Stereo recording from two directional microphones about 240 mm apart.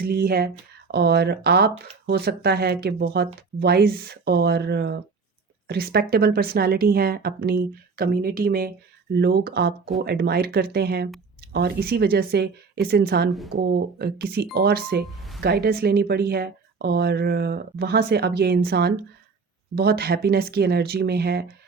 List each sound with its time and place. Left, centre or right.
0.0 s speech: right